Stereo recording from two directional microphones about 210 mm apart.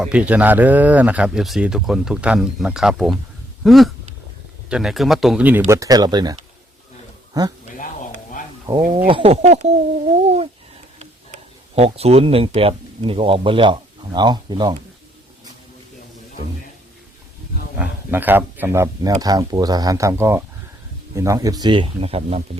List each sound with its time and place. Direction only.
0.0 s speech: 5° right (ahead or behind)
7.3 s speech: 15° right (ahead or behind)
8.6 s speech: 20° right (ahead or behind)
10.2 s a sound: 30° right (ahead or behind)
11.0 s speech: 30° right (ahead or behind)
17.7 s speech: 10° right (ahead or behind); by 22.4 s 30° right (ahead or behind)